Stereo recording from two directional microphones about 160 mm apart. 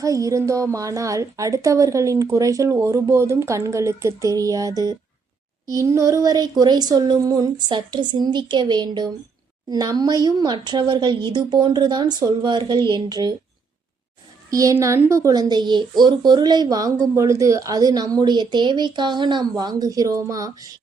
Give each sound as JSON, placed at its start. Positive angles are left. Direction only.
{"t": 0.0, "sound": "speech", "side_deg": -20}
{"t": 14.5, "sound": "speech", "side_deg": -20}